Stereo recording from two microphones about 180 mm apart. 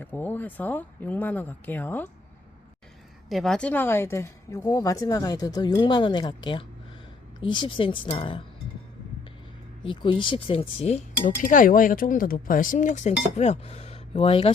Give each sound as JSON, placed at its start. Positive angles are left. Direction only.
{"t": 0.0, "sound": "speech", "side_deg": 10}
{"t": 3.2, "sound": "speech", "side_deg": 0}
{"t": 9.8, "sound": "speech", "side_deg": 30}
{"t": 11.3, "sound": "speech", "side_deg": 50}